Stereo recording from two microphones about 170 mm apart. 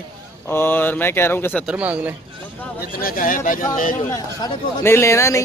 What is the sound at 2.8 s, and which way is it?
Speech, 60° left (ahead or behind).